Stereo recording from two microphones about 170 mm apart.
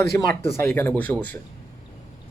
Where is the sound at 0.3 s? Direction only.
15° left (ahead or behind).